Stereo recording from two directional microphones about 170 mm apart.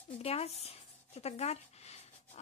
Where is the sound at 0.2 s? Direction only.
35° left (ahead or behind).